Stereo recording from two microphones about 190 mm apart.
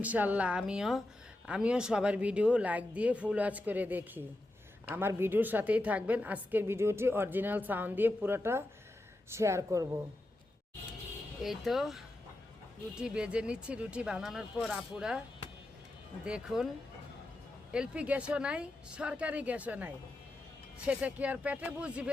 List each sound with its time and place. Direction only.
0.0 s a woman's voice: 10° right (ahead or behind)
11.4 s speech: centre (ahead or behind)
16.2 s speech: 5° right (ahead or behind)
17.7 s a woman's voice: 5° right (ahead or behind)